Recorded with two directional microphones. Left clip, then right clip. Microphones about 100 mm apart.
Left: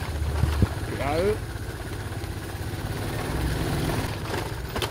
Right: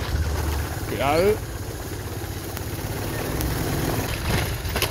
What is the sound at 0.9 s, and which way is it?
Speech, 35° right (ahead or behind).